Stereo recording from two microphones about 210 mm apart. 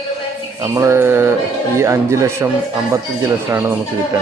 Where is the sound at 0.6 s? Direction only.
15° right (ahead or behind).